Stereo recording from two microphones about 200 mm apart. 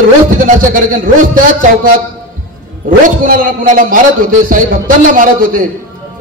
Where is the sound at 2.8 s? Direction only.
45° right (ahead or behind).